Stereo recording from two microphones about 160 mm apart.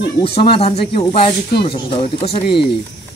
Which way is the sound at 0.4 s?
35° left (ahead or behind).